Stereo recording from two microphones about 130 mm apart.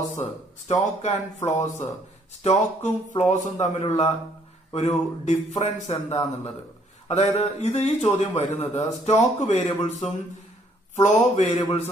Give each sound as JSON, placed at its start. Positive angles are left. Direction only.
{"t": 0.7, "sound": "a man's voice", "side_deg": 60}